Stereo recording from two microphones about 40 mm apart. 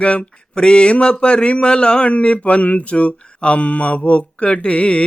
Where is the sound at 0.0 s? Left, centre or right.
Left.